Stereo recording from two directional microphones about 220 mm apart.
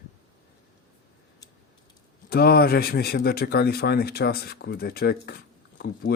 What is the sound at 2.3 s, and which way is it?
Speech, 45° left (ahead or behind).